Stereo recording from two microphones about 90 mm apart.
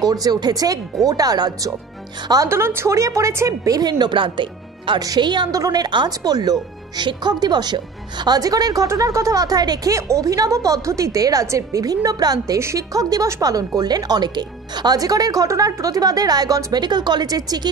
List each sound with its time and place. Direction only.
0.0 s speech: 45° right (ahead or behind)
2.4 s a woman's voice: 25° right (ahead or behind)
4.0 s speech: 65° right (ahead or behind)
5.0 s speech: 50° right (ahead or behind)
9.9 s a woman's voice: 35° right (ahead or behind)
12.5 s a woman's voice: 35° right (ahead or behind)